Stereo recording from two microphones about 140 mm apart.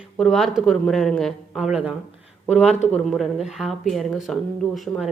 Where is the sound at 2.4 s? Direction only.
10° left (ahead or behind).